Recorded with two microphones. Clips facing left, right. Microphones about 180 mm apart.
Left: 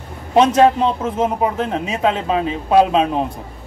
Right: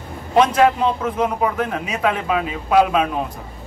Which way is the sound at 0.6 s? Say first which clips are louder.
Left 3 dB; 25° left (ahead or behind).